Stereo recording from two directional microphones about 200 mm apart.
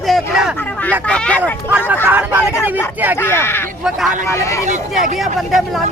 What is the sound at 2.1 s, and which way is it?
Speech, 10° right (ahead or behind).